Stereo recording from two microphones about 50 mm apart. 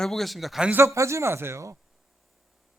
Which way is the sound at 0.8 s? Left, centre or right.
Right.